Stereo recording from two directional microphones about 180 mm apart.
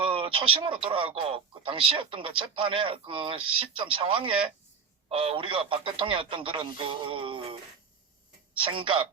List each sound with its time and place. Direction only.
0.0 s speech: 30° right (ahead or behind)
8.5 s speech: 30° right (ahead or behind)